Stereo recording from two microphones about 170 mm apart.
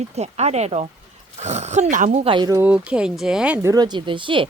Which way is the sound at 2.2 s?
25° right (ahead or behind).